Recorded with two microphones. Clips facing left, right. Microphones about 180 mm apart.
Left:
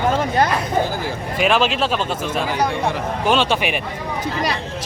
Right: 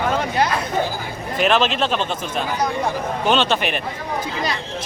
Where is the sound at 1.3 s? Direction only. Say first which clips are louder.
Even; 10° left (ahead or behind).